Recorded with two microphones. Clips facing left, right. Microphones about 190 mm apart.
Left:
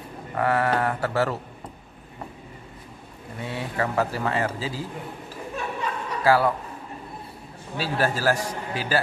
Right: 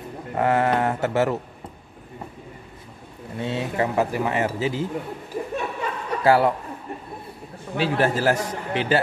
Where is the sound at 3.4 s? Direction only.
25° right (ahead or behind).